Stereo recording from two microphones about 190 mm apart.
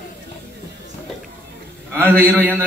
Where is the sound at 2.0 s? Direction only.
10° right (ahead or behind).